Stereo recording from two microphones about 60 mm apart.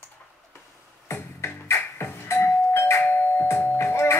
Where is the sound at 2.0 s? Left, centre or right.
Left.